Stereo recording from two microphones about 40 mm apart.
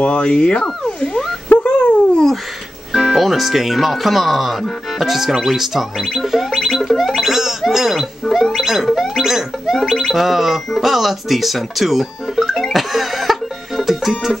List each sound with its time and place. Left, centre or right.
0.0 s speech: left
0.8 s a sound: centre
1.6 s dog: left
2.9 s speech: centre
7.2 s gargling: centre
8.6 s music: centre